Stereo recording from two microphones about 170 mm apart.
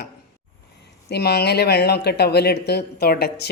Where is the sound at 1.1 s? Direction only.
70° left (ahead or behind).